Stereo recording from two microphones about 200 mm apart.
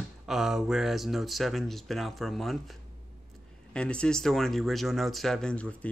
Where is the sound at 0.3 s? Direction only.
Centre (ahead or behind).